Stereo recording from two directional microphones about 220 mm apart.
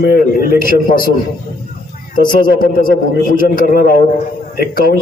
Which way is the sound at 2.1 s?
40° left (ahead or behind).